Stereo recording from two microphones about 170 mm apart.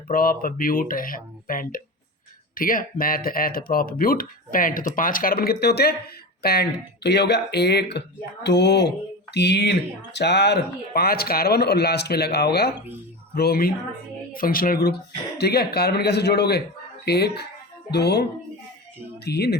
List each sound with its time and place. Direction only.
0.1 s speech: 60° left (ahead or behind)